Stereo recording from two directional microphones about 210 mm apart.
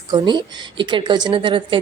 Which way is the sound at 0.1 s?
20° right (ahead or behind).